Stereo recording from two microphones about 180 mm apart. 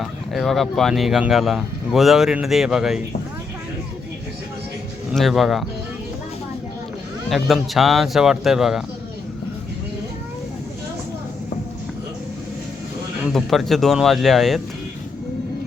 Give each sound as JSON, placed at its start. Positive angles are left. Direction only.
{"t": 0.0, "sound": "speech", "side_deg": 0}
{"t": 5.1, "sound": "speech", "side_deg": 0}
{"t": 7.3, "sound": "speech", "side_deg": 0}
{"t": 13.2, "sound": "speech", "side_deg": 0}